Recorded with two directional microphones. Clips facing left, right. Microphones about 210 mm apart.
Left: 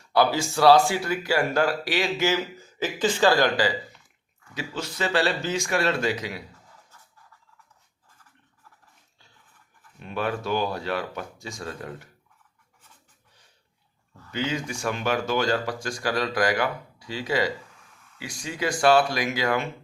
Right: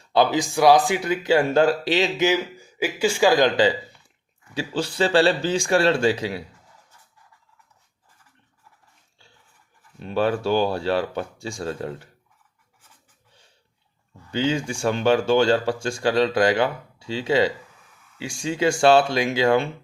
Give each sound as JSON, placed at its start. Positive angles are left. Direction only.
{"t": 0.1, "sound": "speech", "side_deg": -20}
{"t": 4.5, "sound": "speech", "side_deg": -30}
{"t": 10.0, "sound": "speech", "side_deg": -30}
{"t": 14.3, "sound": "speech", "side_deg": -30}